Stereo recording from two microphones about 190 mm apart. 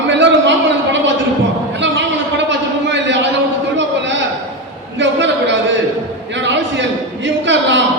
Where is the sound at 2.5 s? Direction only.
70° right (ahead or behind).